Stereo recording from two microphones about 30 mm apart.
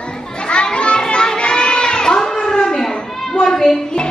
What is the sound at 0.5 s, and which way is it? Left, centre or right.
Children playing, left.